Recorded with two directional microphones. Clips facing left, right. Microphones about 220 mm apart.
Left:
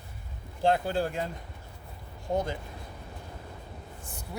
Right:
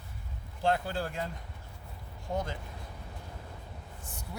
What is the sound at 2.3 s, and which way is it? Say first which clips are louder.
Speech: left 5 dB; 15° left (ahead or behind).